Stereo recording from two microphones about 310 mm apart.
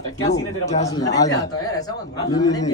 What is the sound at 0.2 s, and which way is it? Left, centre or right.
A man's voice, centre.